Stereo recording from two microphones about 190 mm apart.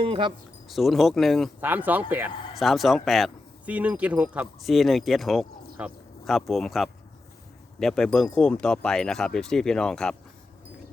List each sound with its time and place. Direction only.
0.0 s speech: 25° right (ahead or behind)
0.7 s speech: centre (ahead or behind)